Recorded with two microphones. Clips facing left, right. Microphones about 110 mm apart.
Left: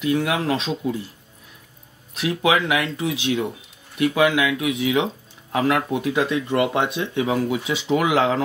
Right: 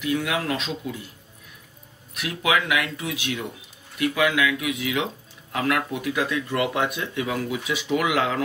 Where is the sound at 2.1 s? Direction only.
30° left (ahead or behind).